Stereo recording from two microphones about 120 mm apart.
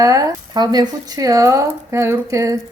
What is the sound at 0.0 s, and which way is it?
Speech, 30° right (ahead or behind).